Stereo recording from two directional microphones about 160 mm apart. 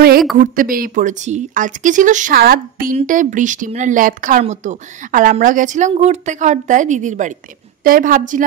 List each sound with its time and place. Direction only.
0.4 s speech: 60° right (ahead or behind)
3.1 s a woman's voice: 55° right (ahead or behind)